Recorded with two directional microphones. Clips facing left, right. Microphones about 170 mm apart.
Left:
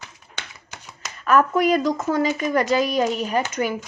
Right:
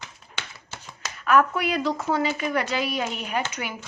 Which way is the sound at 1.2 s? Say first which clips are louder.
Left 3 dB; 40° left (ahead or behind).